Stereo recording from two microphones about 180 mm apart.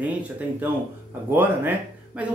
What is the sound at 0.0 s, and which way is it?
Speech, 10° right (ahead or behind).